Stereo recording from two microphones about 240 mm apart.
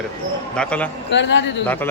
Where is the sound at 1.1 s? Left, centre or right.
Left.